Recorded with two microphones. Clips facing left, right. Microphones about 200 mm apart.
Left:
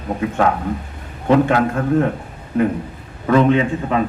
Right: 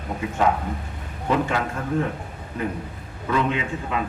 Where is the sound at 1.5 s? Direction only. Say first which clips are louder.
Left 9 dB; 60° left (ahead or behind).